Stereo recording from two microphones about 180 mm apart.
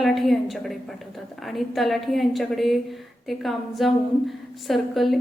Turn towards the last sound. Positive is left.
turn(degrees=0)  # may be behind; listen again after turning